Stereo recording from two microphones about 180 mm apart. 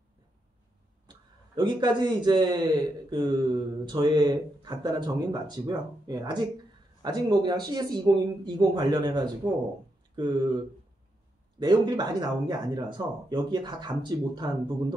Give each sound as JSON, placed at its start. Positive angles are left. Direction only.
{"t": 1.0, "sound": "a man's voice", "side_deg": -25}
{"t": 11.6, "sound": "a man's voice", "side_deg": -25}